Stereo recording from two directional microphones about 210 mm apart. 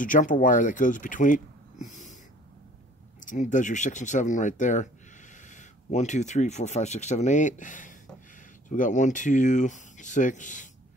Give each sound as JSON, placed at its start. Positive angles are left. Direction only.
{"t": 0.0, "sound": "speech", "side_deg": 40}
{"t": 3.2, "sound": "speech", "side_deg": 35}